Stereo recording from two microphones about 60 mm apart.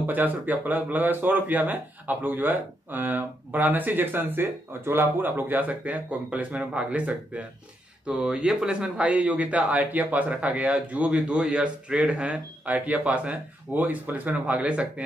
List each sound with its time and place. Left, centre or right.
0.0 s a man's voice: right